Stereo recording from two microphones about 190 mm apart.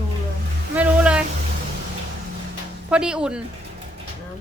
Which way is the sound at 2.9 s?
5° right (ahead or behind).